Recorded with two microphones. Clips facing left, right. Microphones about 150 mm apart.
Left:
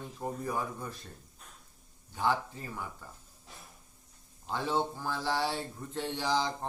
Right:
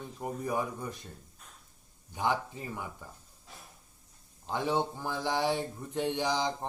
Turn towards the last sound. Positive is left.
turn(degrees=-15)  # may be behind; listen again after turning